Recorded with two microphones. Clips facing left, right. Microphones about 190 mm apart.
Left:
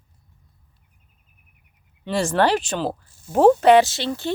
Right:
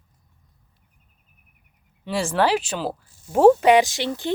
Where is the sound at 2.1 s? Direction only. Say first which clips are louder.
Left 2 dB; 5° right (ahead or behind).